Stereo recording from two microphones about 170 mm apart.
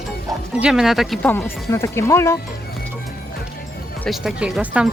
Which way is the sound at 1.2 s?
15° left (ahead or behind).